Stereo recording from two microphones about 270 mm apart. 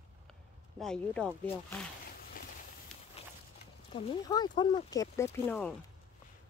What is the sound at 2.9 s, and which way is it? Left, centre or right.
Walk, centre.